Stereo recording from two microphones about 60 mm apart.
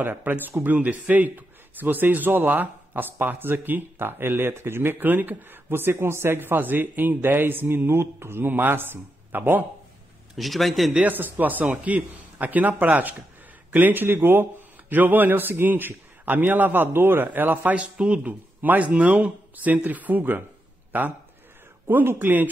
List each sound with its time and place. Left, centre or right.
0.0 s speech: right
10.3 s speech: centre
10.9 s speech: right
17.7 s speech: right